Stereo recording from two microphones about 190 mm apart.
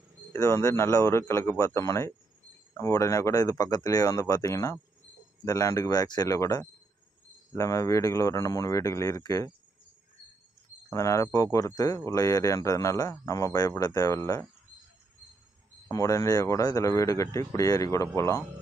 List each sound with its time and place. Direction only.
0.3 s speech: 15° left (ahead or behind)
10.9 s speech: 15° left (ahead or behind)
15.9 s speech: 15° left (ahead or behind)